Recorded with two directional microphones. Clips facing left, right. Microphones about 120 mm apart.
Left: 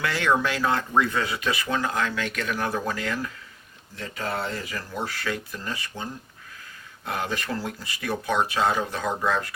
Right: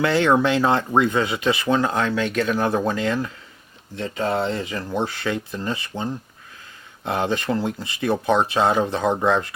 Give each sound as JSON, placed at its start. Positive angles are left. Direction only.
{"t": 0.0, "sound": "speech", "side_deg": -25}